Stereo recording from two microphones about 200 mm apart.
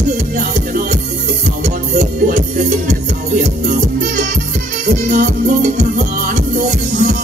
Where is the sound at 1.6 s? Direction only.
40° right (ahead or behind).